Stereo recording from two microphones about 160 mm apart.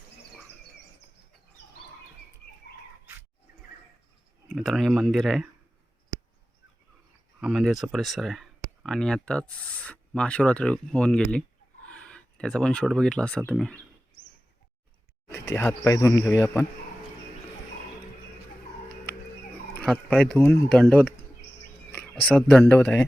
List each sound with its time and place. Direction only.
4.4 s speech: centre (ahead or behind)
7.4 s speech: centre (ahead or behind)
15.4 s speech: 20° left (ahead or behind)
19.7 s a sound: 5° left (ahead or behind)
20.1 s a man's voice: centre (ahead or behind)
22.4 s a man's voice: centre (ahead or behind)